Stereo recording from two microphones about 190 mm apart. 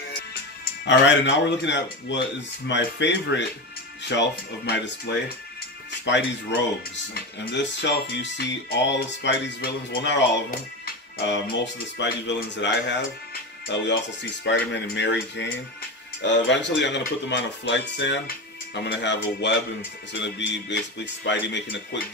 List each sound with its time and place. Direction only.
0.8 s speech: 70° left (ahead or behind)
5.9 s music: 70° left (ahead or behind)
7.2 s speech: 65° left (ahead or behind)